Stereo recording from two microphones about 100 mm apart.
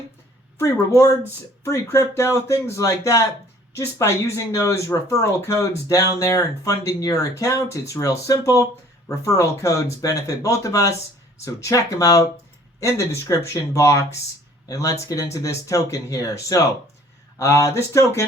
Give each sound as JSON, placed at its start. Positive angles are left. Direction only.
{"t": 0.6, "sound": "speech", "side_deg": 30}